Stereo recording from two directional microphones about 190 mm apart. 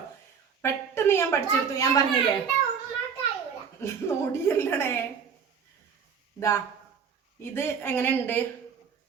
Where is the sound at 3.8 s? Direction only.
15° left (ahead or behind).